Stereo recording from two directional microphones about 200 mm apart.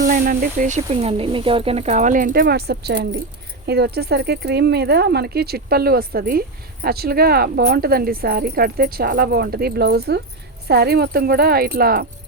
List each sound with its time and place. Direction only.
0.0 s speech: 45° right (ahead or behind)